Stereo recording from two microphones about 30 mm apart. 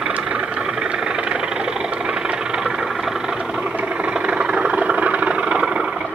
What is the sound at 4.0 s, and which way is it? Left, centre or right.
Vehicle, right.